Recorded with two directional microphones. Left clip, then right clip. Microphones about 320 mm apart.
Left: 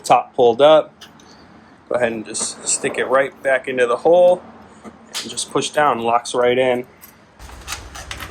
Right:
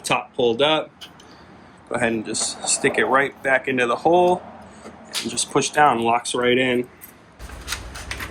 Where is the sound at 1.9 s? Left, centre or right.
Centre.